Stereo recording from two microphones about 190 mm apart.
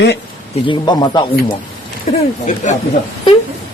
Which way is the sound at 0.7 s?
25° left (ahead or behind).